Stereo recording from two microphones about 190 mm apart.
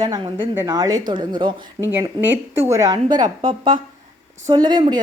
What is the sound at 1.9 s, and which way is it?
A woman's voice, 10° right (ahead or behind).